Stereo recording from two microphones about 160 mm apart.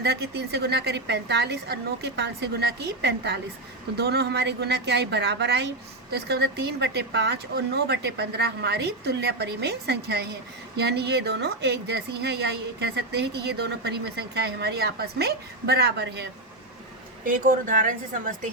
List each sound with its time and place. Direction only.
0.0 s a woman's voice: 90° right
17.2 s a woman's voice: 55° right (ahead or behind)